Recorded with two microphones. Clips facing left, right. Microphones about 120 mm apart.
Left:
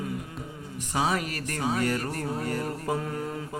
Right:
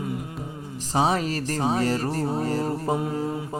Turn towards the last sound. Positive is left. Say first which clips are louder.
# right 5 dB
turn(degrees=-25)  # may be behind; listen again after turning